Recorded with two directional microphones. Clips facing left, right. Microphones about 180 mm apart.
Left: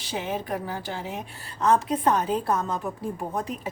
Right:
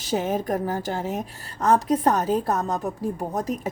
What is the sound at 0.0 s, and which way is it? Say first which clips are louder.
A woman's voice: right 6 dB; 45° right (ahead or behind).